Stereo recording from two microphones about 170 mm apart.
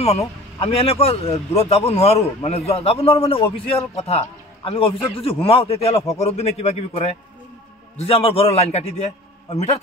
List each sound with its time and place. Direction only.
0.0 s speech: 40° left (ahead or behind)